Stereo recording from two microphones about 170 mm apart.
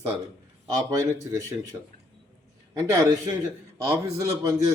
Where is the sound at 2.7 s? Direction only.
20° right (ahead or behind).